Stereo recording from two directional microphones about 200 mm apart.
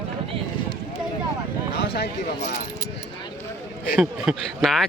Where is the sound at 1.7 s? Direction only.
55° left (ahead or behind).